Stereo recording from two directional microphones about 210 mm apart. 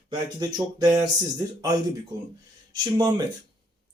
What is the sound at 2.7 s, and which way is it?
Speech, 20° right (ahead or behind).